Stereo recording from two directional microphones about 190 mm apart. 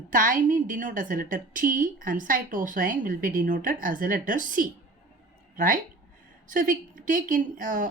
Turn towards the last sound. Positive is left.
turn(degrees=-45)  # may be behind; listen again after turning